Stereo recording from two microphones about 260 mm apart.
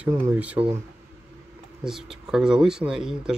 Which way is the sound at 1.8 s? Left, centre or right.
Centre.